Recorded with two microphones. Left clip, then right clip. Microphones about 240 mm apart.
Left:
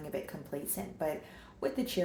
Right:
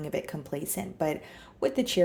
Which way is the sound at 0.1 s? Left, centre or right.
Right.